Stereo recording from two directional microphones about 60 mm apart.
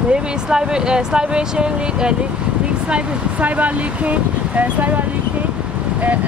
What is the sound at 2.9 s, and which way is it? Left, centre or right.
Speech, right.